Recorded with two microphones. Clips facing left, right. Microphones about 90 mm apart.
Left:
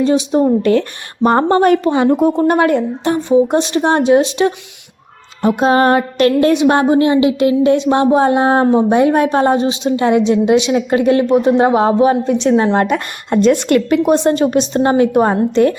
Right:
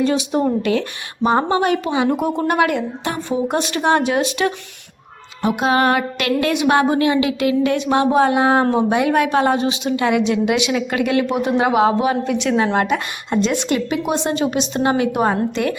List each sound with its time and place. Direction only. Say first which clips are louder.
0.0 s speech: left 5 dB; 25° left (ahead or behind)
0.6 s a woman's voice: left 6 dB; 45° left (ahead or behind)
2.0 s a woman's voice: left 9 dB; 25° left (ahead or behind)
13.3 s a woman's voice: left 7 dB; 50° left (ahead or behind)
14.0 s a woman's voice: left 7 dB; 40° left (ahead or behind)